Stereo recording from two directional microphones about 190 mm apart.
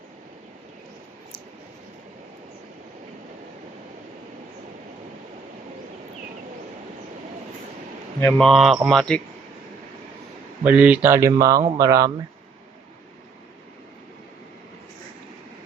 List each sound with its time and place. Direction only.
8.2 s speech: centre (ahead or behind)
10.6 s speech: 10° right (ahead or behind)